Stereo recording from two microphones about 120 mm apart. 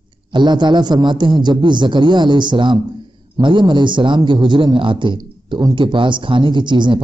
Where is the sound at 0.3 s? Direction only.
40° right (ahead or behind).